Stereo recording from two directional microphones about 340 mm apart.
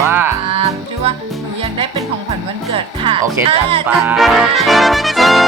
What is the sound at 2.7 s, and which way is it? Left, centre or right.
Speech, centre.